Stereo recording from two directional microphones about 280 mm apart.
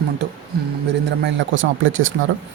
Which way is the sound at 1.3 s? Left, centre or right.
Right.